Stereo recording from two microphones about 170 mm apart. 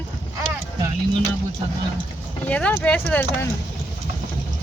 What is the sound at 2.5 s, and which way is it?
Speech, 10° left (ahead or behind).